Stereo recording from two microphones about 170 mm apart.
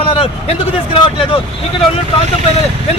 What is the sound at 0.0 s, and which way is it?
Speech, 35° left (ahead or behind).